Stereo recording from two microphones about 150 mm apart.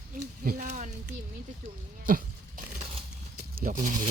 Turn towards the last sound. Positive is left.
turn(degrees=-60)  # may be behind; listen again after turning